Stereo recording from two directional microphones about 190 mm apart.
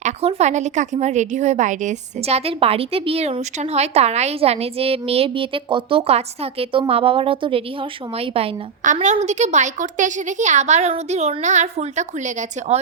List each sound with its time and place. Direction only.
0.0 s a woman's voice: 35° right (ahead or behind)